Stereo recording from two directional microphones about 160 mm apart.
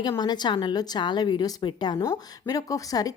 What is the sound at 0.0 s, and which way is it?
A woman's voice, 25° left (ahead or behind).